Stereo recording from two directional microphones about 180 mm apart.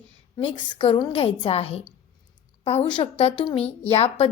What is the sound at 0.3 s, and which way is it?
A woman's voice, 25° left (ahead or behind).